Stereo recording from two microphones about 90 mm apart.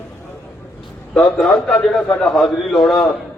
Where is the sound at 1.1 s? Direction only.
10° left (ahead or behind).